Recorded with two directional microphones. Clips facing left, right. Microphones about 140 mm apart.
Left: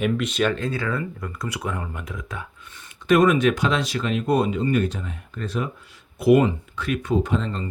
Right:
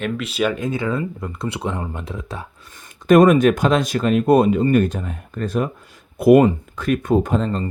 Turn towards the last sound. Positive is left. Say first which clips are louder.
# right 4 dB
turn(degrees=-45)  # may be behind; listen again after turning